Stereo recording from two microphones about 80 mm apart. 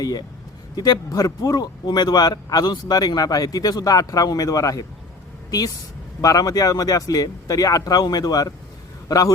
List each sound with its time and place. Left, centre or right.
0.0 s a man's voice: left